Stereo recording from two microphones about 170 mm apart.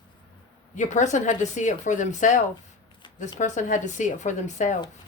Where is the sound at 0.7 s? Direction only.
45° left (ahead or behind).